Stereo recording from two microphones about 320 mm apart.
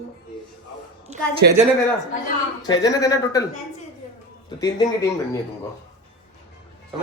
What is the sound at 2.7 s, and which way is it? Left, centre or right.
Speech, centre.